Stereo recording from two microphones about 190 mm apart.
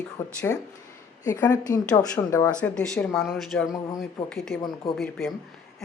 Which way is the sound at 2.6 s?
5° left (ahead or behind).